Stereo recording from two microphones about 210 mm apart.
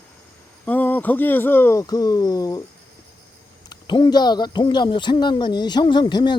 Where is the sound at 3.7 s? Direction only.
20° left (ahead or behind).